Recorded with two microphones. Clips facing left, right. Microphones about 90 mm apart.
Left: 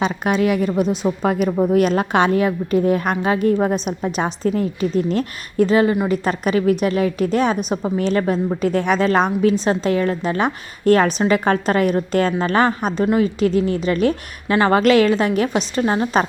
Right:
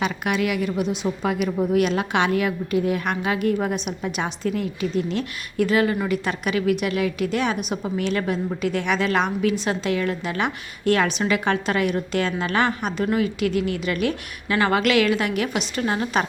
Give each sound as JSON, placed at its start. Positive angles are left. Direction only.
{"t": 0.0, "sound": "a woman's voice", "side_deg": 30}
{"t": 6.2, "sound": "a woman's voice", "side_deg": 35}